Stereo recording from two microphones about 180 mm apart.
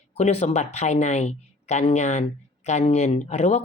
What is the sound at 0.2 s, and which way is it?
Speech, 35° left (ahead or behind).